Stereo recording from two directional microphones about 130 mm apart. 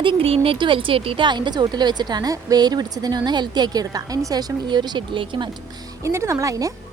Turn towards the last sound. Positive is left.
turn(degrees=-25)  # may be behind; listen again after turning